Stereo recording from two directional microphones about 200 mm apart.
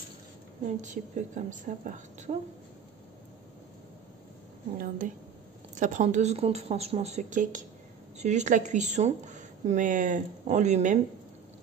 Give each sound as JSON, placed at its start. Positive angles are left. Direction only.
{"t": 0.7, "sound": "speech", "side_deg": -35}
{"t": 4.7, "sound": "speech", "side_deg": -40}